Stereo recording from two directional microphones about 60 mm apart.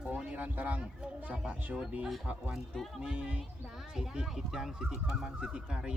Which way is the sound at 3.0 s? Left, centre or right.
Centre.